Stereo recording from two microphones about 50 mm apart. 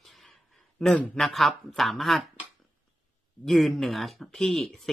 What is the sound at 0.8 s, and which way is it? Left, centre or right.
Speech, centre.